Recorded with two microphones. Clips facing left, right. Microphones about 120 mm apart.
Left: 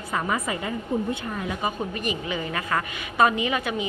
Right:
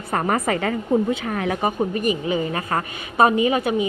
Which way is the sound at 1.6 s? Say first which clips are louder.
Right 6 dB; 45° right (ahead or behind).